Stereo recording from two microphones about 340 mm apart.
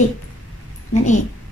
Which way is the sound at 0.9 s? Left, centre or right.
Left.